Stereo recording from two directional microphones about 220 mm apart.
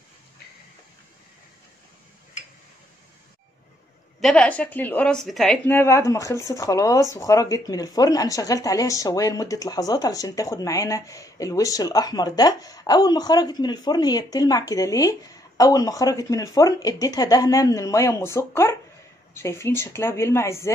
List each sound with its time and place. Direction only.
4.2 s speech: 5° left (ahead or behind)